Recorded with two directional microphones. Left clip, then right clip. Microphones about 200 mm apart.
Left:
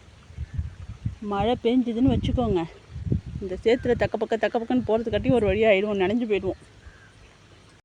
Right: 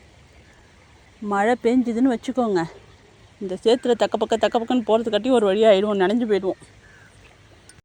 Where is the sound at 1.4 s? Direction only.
40° right (ahead or behind).